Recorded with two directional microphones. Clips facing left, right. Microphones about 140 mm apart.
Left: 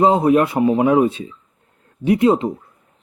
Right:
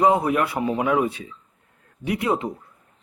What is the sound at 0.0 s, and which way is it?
A man's voice, 25° left (ahead or behind).